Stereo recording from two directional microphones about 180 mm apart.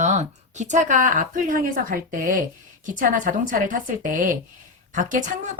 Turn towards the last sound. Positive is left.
turn(degrees=-45)  # may be behind; listen again after turning